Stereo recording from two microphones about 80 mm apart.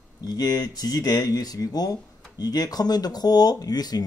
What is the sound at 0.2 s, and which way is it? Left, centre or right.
Speech, left.